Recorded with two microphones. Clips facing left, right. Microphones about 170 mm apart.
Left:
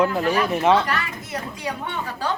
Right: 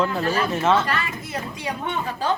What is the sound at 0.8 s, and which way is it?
Speech, 30° right (ahead or behind).